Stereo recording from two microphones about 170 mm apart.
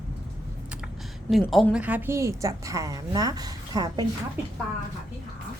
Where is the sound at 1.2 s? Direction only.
Centre (ahead or behind); by 4.0 s 25° right (ahead or behind).